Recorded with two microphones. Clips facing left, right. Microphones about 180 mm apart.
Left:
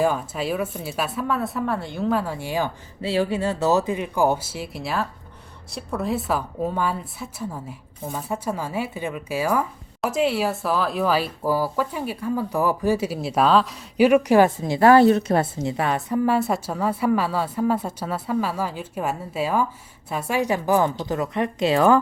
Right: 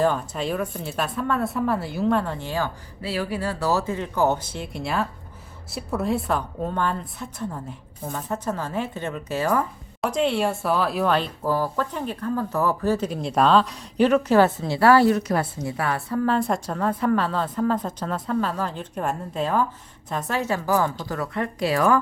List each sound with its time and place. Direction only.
0.0 s a woman's voice: 5° left (ahead or behind)
3.0 s a woman's voice: 25° left (ahead or behind)